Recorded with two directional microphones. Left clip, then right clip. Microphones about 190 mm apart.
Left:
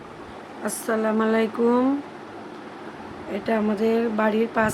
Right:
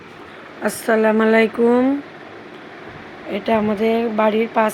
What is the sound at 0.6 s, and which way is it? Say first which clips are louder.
Speech: right 8 dB; 20° right (ahead or behind).